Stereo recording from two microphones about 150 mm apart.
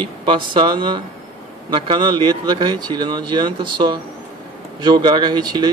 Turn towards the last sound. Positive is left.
turn(degrees=-30)  # may be behind; listen again after turning